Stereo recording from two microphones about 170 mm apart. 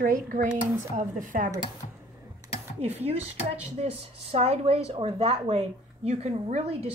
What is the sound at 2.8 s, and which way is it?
Speech, 40° right (ahead or behind).